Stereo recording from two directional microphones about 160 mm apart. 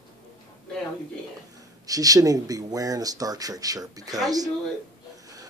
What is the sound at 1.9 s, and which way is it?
Speech, 20° right (ahead or behind).